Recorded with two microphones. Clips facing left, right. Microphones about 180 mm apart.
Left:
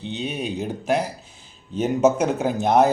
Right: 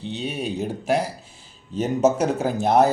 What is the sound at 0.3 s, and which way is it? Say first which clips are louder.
Speech: right 1 dB; centre (ahead or behind).